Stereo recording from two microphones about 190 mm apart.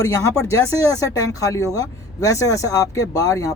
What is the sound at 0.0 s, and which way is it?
Speech, 15° left (ahead or behind).